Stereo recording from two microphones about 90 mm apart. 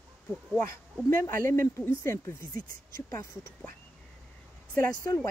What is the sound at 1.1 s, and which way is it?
Speech, 25° left (ahead or behind).